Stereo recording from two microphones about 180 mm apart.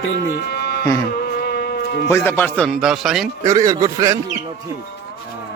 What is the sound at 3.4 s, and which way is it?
Speech, 20° right (ahead or behind).